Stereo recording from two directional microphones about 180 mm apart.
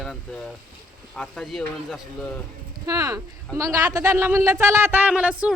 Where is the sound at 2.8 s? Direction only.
20° right (ahead or behind).